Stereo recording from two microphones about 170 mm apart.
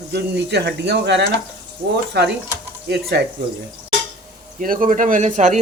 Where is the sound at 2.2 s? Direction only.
70° right (ahead or behind).